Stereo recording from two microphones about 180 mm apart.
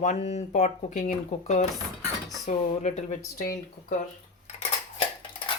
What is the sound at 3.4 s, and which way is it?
Speech, 55° left (ahead or behind).